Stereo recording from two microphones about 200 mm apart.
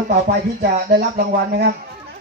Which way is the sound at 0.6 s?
45° right (ahead or behind).